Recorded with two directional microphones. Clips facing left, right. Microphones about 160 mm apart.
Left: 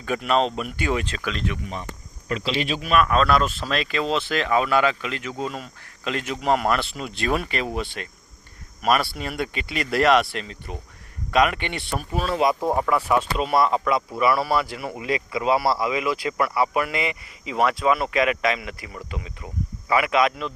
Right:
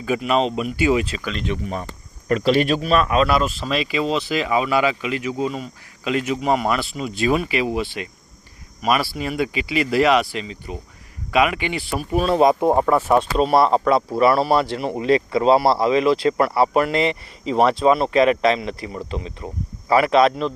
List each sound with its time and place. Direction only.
0.0 s speech: 5° right (ahead or behind)
1.6 s speech: 45° right (ahead or behind)
3.1 s speech: 10° right (ahead or behind)
12.4 s speech: 25° right (ahead or behind)